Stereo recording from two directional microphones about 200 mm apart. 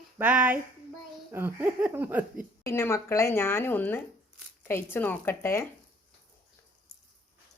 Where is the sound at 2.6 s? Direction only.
15° left (ahead or behind).